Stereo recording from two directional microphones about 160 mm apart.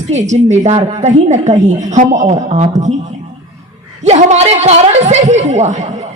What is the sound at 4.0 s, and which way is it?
A woman's voice, 45° right (ahead or behind).